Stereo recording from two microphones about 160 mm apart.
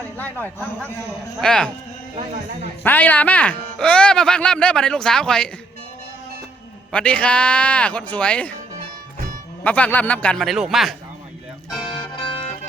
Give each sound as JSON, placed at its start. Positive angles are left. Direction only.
{"t": 0.2, "sound": "speech", "side_deg": 10}
{"t": 2.1, "sound": "speech", "side_deg": -50}
{"t": 2.8, "sound": "speech", "side_deg": 10}
{"t": 6.9, "sound": "speech", "side_deg": 5}
{"t": 9.6, "sound": "speech", "side_deg": 10}
{"t": 11.9, "sound": "music", "side_deg": 30}